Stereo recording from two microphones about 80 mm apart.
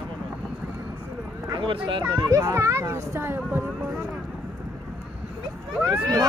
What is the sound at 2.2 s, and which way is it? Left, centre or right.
Speech, right.